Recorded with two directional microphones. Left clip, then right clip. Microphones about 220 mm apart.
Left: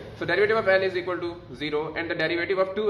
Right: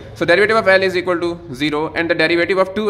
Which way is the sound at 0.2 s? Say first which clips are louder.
Right 10 dB; 50° right (ahead or behind).